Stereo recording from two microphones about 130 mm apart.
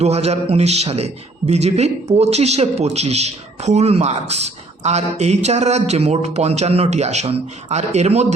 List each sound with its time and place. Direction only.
0.0 s a man's voice: 55° right (ahead or behind)